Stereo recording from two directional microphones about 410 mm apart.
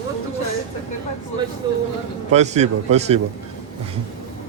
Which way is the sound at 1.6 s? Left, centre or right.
Centre.